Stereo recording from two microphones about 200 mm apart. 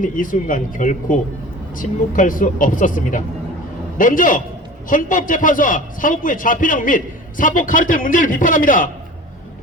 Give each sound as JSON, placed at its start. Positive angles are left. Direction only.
{"t": 0.0, "sound": "a man's voice", "side_deg": 40}